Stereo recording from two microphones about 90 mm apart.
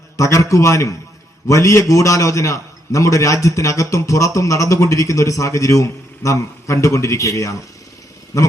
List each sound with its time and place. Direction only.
0.2 s a man's voice: 35° left (ahead or behind)